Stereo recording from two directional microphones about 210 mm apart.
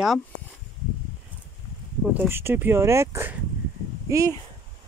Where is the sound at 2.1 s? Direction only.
10° right (ahead or behind).